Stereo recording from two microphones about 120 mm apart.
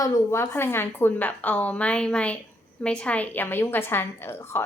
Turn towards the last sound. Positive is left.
turn(degrees=20)  # may be behind; listen again after turning